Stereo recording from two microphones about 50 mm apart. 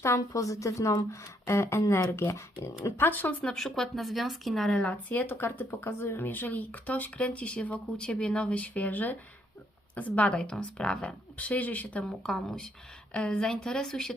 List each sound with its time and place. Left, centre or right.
0.0 s speech: left
1.5 s speech: left
2.3 s speech: left
3.0 s speech: left
3.4 s speech: centre
4.7 s a woman's voice: left
11.3 s speech: left
12.0 s a woman's voice: centre